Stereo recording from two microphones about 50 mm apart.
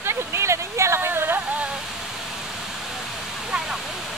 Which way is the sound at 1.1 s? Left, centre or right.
Right.